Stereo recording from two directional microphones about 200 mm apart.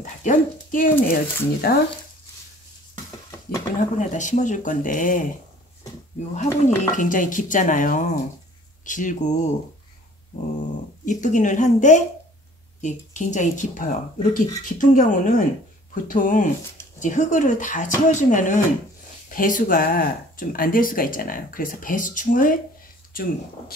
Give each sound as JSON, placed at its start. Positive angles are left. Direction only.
{"t": 0.0, "sound": "dog", "side_deg": 40}
{"t": 1.0, "sound": "speech", "side_deg": 45}
{"t": 4.0, "sound": "speech", "side_deg": 40}
{"t": 6.3, "sound": "speech", "side_deg": 40}
{"t": 11.1, "sound": "speech", "side_deg": 40}